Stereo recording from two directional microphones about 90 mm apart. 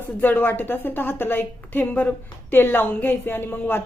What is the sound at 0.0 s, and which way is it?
A woman's voice, 25° left (ahead or behind).